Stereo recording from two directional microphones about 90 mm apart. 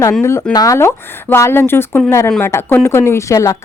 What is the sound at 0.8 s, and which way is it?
A woman's voice, 30° left (ahead or behind).